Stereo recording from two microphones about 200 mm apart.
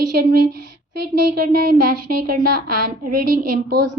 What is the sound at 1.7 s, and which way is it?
Speech, 45° right (ahead or behind).